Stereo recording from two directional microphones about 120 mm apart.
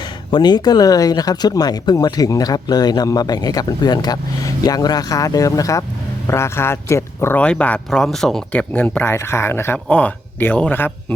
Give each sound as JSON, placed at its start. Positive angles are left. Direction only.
{"t": 0.3, "sound": "speech", "side_deg": 40}